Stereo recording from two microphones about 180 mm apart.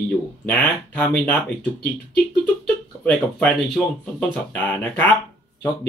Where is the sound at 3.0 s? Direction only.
5° left (ahead or behind).